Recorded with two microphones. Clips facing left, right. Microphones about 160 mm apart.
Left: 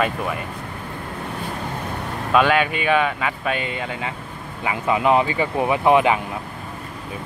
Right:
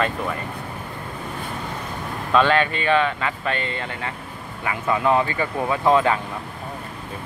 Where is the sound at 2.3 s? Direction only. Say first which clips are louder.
Left 1 dB; 10° left (ahead or behind).